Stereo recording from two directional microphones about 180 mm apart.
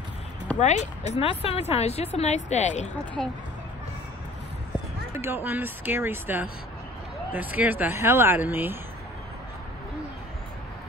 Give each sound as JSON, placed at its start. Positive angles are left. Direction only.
{"t": 0.6, "sound": "speech", "side_deg": 40}
{"t": 3.2, "sound": "speech", "side_deg": 5}
{"t": 5.1, "sound": "speech", "side_deg": -15}